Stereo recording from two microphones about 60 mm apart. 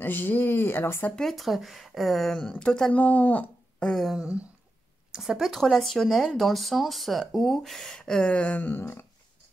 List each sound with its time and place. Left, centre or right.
0.0 s speech: left
1.1 s speech: centre
2.6 s speech: centre
2.9 s speech: left
4.1 s a sound: centre
5.1 s speech: centre; by 9.0 s left